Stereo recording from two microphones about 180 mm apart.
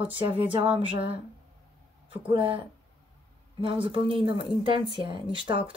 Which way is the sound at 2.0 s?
30° right (ahead or behind).